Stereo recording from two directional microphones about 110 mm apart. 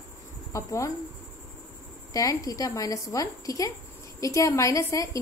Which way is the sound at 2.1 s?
30° left (ahead or behind).